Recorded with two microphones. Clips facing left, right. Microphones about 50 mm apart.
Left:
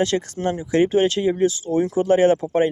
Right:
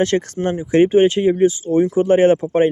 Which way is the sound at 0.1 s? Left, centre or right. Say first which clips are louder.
Right 4 dB; right.